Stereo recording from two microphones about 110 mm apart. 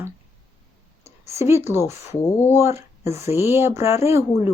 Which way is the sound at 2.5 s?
25° right (ahead or behind).